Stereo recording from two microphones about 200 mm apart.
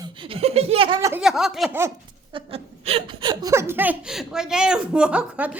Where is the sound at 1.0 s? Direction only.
15° right (ahead or behind).